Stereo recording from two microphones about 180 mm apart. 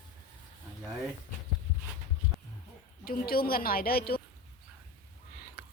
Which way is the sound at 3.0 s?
55° left (ahead or behind).